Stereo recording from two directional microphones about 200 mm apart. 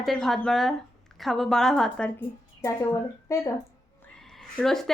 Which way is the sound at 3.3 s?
15° left (ahead or behind).